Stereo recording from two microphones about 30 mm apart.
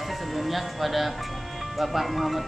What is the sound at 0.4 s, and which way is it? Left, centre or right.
Speech, centre.